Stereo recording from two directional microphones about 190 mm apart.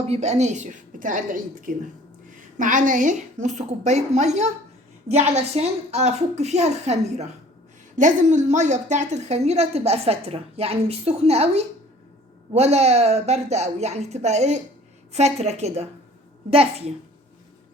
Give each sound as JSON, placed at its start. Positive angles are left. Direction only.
{"t": 0.1, "sound": "a woman's voice", "side_deg": -35}